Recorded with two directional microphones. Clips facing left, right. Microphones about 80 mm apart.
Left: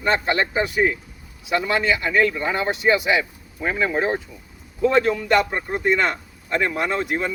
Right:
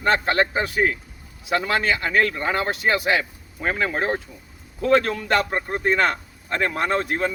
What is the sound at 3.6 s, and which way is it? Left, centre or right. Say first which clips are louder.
Speech: left 2 dB; right.